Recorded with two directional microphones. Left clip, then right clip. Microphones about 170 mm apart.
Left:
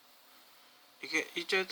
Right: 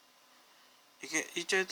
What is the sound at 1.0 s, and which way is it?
Speech, 20° right (ahead or behind).